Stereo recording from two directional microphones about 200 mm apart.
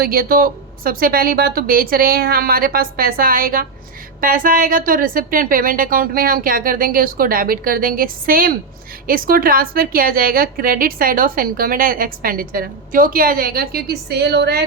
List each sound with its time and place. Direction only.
0.0 s a woman's voice: 50° right (ahead or behind)